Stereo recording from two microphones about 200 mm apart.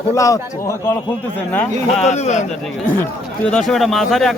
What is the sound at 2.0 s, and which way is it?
Speech, 35° left (ahead or behind).